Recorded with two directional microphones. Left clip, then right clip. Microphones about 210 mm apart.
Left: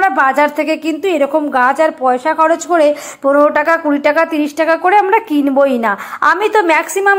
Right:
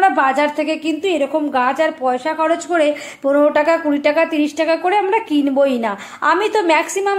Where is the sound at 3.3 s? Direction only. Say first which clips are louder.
Left 3 dB; 10° left (ahead or behind).